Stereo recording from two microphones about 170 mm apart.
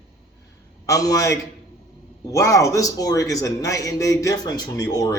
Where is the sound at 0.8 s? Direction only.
20° left (ahead or behind).